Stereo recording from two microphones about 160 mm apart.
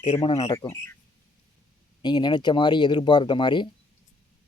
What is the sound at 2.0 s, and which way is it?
Speech, 30° left (ahead or behind).